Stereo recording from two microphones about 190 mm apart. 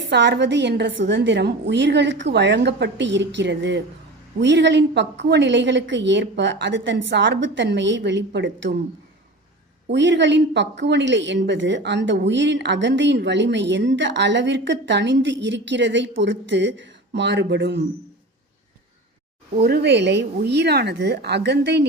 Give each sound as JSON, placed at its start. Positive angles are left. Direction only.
{"t": 0.1, "sound": "a woman's voice", "side_deg": -65}
{"t": 9.9, "sound": "a woman's voice", "side_deg": -70}
{"t": 19.6, "sound": "a woman's voice", "side_deg": -60}